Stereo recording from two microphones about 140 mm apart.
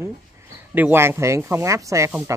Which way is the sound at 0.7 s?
15° right (ahead or behind).